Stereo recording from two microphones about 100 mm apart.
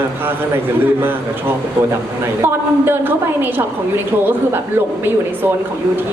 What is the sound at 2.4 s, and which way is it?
Speech, 20° right (ahead or behind).